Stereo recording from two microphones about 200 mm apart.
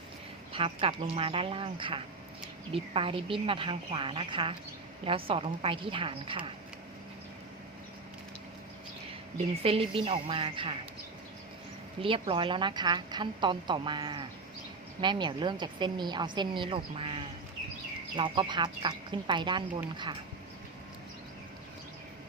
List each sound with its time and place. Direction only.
0.5 s a woman's voice: 25° right (ahead or behind)
9.6 s a woman's voice: 30° right (ahead or behind)
12.0 s a woman's voice: 25° right (ahead or behind)